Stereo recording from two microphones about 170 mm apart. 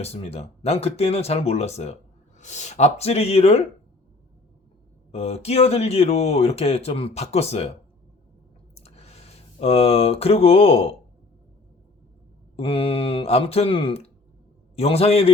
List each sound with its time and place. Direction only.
0.0 s speech: 35° left (ahead or behind)
5.1 s speech: 40° left (ahead or behind)
8.7 s a sound: 40° left (ahead or behind)
12.5 s speech: 35° left (ahead or behind)